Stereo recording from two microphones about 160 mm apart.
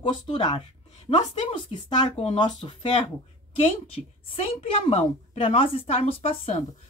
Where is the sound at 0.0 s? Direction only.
30° left (ahead or behind).